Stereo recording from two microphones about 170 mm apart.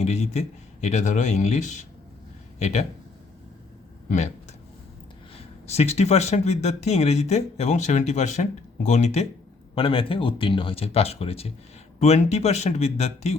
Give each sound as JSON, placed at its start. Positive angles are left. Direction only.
{"t": 0.0, "sound": "speech", "side_deg": 40}
{"t": 5.6, "sound": "speech", "side_deg": 40}